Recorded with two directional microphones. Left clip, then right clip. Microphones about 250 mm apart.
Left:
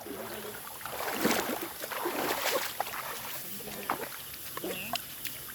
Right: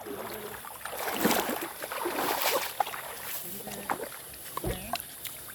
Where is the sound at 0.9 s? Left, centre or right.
Right.